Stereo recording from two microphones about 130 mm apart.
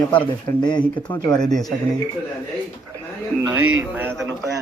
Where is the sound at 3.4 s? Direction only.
15° right (ahead or behind).